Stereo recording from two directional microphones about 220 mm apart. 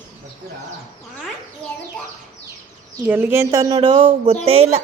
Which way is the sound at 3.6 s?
20° right (ahead or behind).